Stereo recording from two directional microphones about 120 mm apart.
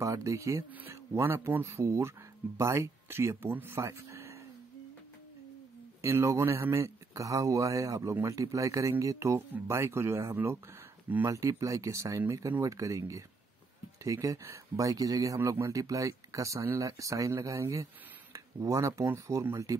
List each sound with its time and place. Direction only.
0.0 s speech: 25° right (ahead or behind)
5.9 s speech: 20° right (ahead or behind)